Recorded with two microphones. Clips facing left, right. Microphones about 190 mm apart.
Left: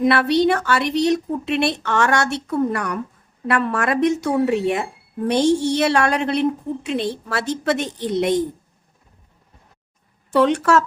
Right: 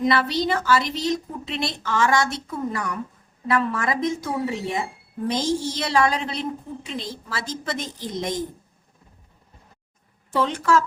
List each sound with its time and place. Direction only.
0.0 s a woman's voice: 60° left (ahead or behind)
10.3 s speech: 65° left (ahead or behind)